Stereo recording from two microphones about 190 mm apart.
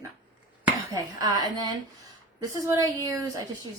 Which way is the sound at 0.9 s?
20° right (ahead or behind).